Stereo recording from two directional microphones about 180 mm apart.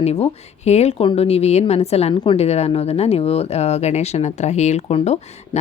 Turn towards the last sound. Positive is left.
turn(degrees=35)  # may be behind; listen again after turning